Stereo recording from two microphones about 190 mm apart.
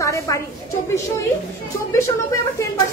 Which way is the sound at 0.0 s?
15° left (ahead or behind).